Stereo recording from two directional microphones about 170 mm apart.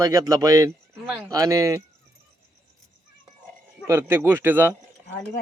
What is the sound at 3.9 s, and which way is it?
Speech, 15° right (ahead or behind).